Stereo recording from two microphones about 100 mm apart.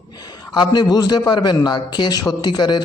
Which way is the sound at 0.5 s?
45° left (ahead or behind).